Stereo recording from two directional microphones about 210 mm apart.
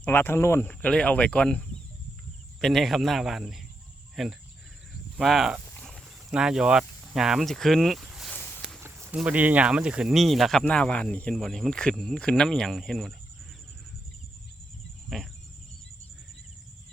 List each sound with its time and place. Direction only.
0.0 s speech: 10° left (ahead or behind)
5.6 s cricket: centre (ahead or behind)
8.4 s a sound: 10° left (ahead or behind)
8.8 s speech: 10° right (ahead or behind)
15.1 s speech: centre (ahead or behind)